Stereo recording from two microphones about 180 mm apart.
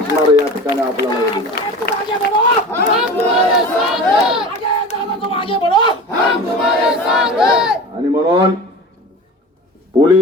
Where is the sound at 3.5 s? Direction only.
Centre (ahead or behind).